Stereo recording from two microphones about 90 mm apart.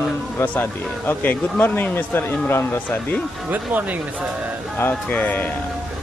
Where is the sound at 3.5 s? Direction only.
20° right (ahead or behind).